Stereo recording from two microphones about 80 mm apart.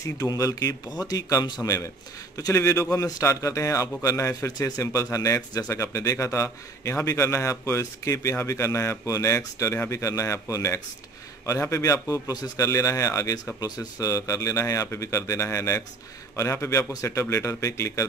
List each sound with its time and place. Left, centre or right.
0.0 s speech: left
2.3 s speech: left